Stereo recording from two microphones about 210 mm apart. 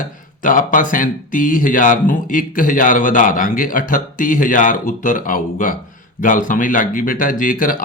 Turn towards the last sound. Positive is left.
turn(degrees=40)  # may be behind; listen again after turning